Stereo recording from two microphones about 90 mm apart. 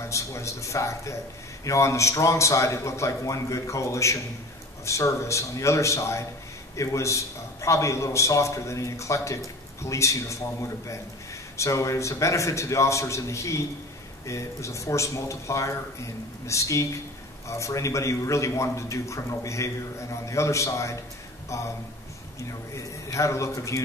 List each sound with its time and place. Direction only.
0.1 s a man's voice: 35° left (ahead or behind)